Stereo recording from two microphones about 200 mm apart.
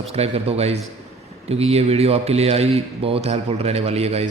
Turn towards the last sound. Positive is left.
turn(degrees=-30)  # may be behind; listen again after turning